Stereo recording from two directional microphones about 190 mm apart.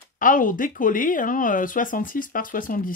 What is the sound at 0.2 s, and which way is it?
Speech, 45° left (ahead or behind).